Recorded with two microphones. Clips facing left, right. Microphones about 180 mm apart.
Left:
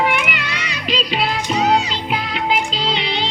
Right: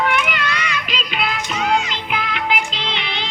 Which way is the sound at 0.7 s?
35° left (ahead or behind).